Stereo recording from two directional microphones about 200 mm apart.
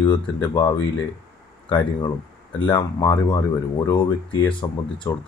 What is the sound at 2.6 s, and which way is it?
Speech, 20° left (ahead or behind).